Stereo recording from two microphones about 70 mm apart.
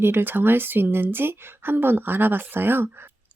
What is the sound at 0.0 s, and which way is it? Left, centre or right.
Speech, right.